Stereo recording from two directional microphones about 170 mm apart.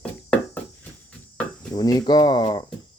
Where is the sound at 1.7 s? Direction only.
25° left (ahead or behind).